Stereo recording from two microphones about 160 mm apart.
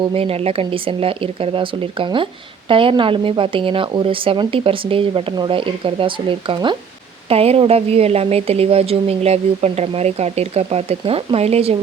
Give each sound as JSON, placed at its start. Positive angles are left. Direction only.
{"t": 0.1, "sound": "a woman's voice", "side_deg": -35}